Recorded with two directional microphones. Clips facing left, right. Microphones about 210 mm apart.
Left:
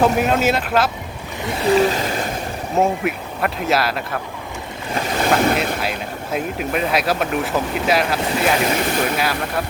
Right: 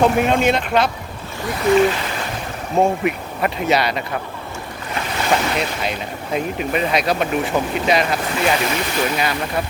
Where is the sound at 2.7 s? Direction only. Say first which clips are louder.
Right 2 dB; centre (ahead or behind).